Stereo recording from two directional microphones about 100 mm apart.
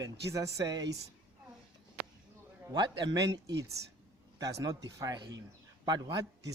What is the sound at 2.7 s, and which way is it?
A man's voice, 50° right (ahead or behind).